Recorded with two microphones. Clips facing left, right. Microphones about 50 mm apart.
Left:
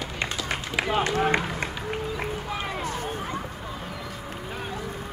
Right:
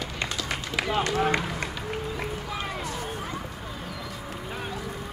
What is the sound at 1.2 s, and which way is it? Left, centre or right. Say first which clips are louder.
Speech: left 1 dB; left.